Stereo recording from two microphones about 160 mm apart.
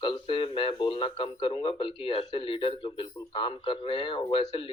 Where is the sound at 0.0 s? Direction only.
35° left (ahead or behind).